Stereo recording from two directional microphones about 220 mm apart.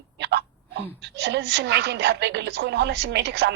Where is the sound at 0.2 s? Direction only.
50° right (ahead or behind).